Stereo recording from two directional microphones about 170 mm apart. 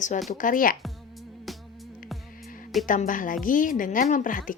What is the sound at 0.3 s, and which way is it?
Speech, 50° left (ahead or behind).